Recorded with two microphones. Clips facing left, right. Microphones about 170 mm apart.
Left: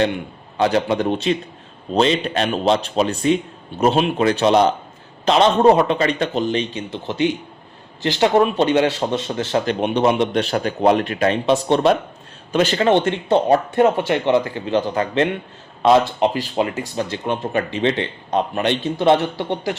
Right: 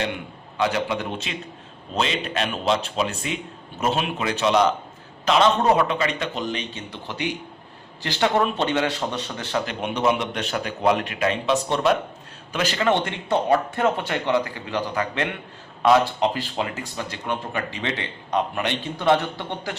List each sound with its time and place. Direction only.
0.5 s a man's voice: 35° left (ahead or behind)